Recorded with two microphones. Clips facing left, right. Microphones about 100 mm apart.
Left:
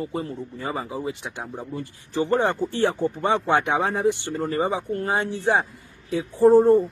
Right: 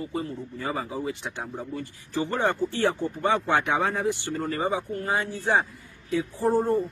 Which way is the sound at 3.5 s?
20° left (ahead or behind).